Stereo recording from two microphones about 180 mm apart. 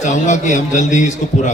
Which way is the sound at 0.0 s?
40° left (ahead or behind).